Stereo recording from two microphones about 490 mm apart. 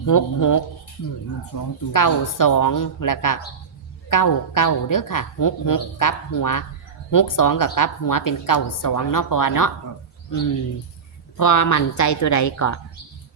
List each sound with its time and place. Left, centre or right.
0.0 s a woman's voice: left
11.3 s a woman's voice: left